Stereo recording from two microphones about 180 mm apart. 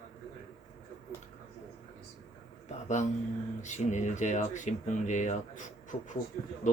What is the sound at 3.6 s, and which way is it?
Speech, 40° left (ahead or behind).